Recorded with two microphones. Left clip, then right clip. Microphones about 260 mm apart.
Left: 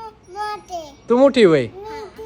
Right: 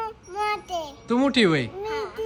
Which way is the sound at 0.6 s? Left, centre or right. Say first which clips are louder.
Even; centre.